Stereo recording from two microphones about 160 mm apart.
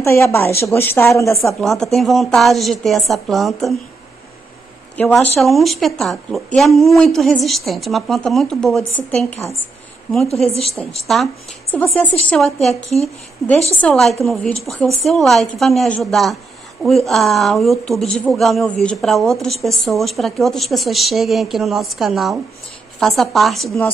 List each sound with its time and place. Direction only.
0.0 s a woman's voice: 15° left (ahead or behind)
1.6 s speech: centre (ahead or behind)
4.9 s speech: 10° left (ahead or behind)
10.6 s a woman's voice: centre (ahead or behind)